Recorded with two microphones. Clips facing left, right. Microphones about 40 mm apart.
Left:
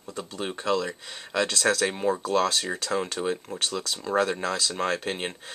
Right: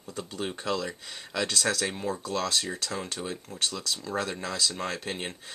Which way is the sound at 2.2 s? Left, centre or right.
Left.